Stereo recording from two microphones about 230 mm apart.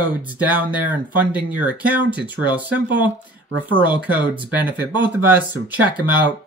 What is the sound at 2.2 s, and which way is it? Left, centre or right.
Speech, centre.